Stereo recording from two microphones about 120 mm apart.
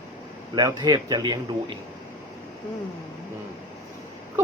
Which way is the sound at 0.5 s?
30° right (ahead or behind).